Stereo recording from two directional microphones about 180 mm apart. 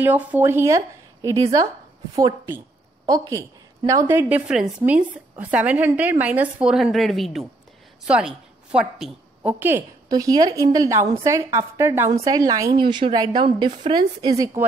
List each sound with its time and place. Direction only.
0.0 s a woman's voice: 10° right (ahead or behind)